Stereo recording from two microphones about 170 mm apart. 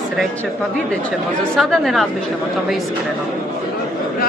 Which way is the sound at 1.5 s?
Centre (ahead or behind).